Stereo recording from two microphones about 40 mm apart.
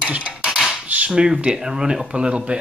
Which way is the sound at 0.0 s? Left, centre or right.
Right.